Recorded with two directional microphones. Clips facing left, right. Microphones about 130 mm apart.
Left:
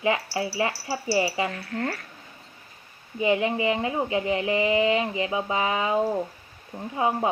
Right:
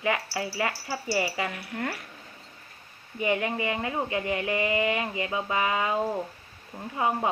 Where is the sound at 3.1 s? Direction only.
20° left (ahead or behind).